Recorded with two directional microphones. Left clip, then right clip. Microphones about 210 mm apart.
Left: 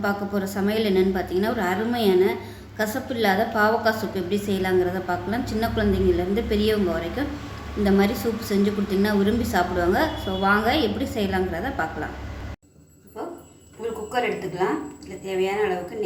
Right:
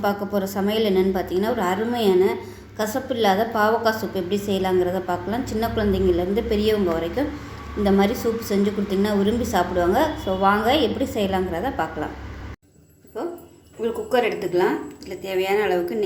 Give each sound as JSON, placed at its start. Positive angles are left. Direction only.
{"t": 0.0, "sound": "a woman's voice", "side_deg": -10}
{"t": 14.1, "sound": "a woman's voice", "side_deg": -50}